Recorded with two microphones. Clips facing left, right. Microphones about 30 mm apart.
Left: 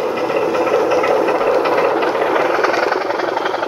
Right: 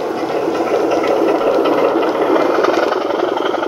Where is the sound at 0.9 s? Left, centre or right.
Left.